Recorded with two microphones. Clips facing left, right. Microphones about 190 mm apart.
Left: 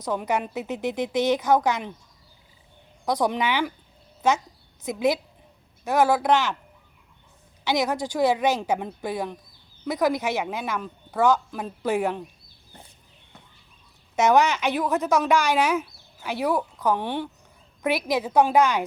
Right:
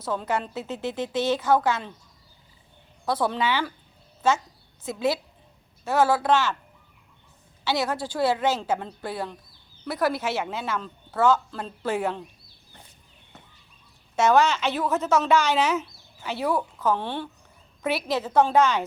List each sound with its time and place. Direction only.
0.0 s speech: 15° left (ahead or behind)
3.1 s speech: 15° left (ahead or behind)
7.6 s speech: 15° left (ahead or behind)
14.2 s speech: 15° left (ahead or behind)